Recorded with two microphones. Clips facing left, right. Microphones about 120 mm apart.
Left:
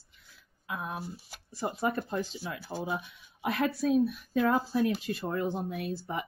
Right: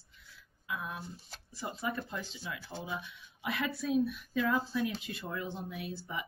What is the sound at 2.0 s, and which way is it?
Speech, 45° left (ahead or behind).